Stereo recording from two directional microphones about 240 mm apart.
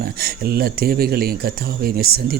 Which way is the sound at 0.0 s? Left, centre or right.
Right.